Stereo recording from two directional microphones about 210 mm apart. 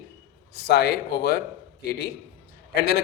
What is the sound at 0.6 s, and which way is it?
Speech, 50° left (ahead or behind).